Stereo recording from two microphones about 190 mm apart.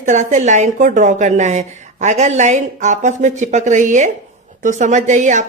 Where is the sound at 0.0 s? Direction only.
40° right (ahead or behind).